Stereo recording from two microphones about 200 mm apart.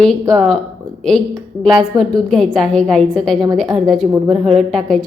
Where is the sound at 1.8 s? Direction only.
Centre (ahead or behind).